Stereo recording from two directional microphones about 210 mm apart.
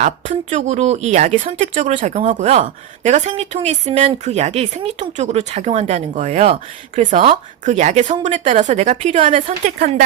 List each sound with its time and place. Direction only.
0.0 s speech: 35° right (ahead or behind)